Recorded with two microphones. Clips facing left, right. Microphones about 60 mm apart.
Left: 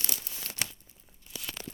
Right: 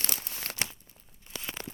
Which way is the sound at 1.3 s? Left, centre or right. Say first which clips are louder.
Right 2 dB; right.